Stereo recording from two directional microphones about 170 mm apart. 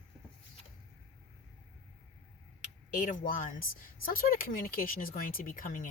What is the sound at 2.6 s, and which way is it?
Speech, 50° left (ahead or behind).